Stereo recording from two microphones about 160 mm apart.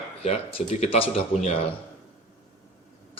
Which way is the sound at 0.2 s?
45° left (ahead or behind).